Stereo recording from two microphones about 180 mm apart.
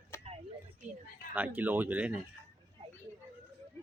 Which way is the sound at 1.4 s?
10° right (ahead or behind).